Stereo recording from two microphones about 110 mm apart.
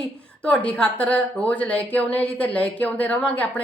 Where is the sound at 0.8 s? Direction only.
15° left (ahead or behind).